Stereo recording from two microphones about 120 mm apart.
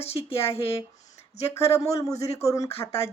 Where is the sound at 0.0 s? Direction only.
55° left (ahead or behind).